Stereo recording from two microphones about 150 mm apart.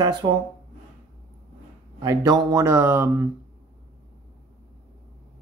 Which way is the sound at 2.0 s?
25° right (ahead or behind).